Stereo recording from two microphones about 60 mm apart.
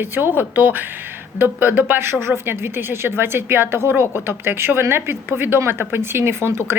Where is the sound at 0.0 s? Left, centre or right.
Right.